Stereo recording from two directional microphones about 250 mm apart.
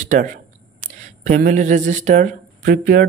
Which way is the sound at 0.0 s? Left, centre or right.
Right.